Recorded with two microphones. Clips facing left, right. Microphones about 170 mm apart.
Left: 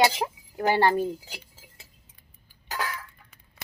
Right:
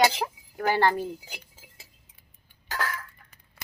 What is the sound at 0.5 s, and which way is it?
Speech, 15° left (ahead or behind).